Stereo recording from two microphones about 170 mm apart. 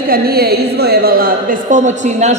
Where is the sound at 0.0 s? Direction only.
60° right (ahead or behind).